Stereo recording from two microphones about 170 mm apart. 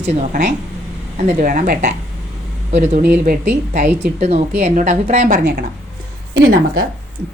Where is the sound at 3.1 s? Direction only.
55° right (ahead or behind).